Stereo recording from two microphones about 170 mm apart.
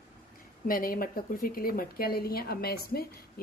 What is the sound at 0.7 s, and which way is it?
Speech, 60° left (ahead or behind).